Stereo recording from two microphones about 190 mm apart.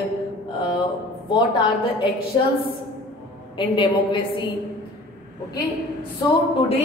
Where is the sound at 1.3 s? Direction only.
25° left (ahead or behind).